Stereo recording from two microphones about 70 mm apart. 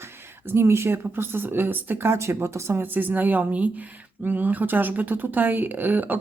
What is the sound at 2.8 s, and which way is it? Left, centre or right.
Speech, right.